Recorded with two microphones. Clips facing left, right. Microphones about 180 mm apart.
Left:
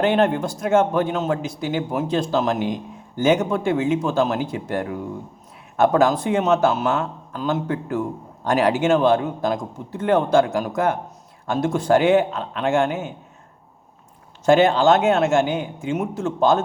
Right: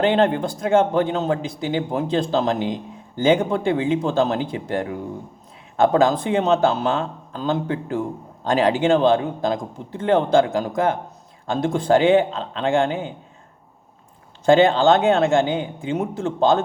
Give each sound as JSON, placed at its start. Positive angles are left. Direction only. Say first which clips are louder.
{"t": 0.0, "sound": "speech", "louder": "right 1 dB", "side_deg": -30}
{"t": 14.7, "sound": "speech", "louder": "even", "side_deg": -30}